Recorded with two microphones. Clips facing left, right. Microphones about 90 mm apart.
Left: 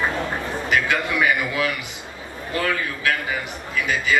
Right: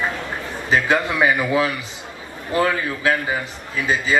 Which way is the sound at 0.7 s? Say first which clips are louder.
Right 4 dB; 30° right (ahead or behind).